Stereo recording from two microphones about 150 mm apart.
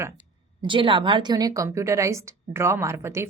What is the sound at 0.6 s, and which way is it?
A woman's voice, 35° right (ahead or behind).